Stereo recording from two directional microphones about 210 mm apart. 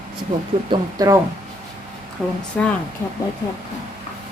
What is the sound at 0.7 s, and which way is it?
Speech, 15° right (ahead or behind).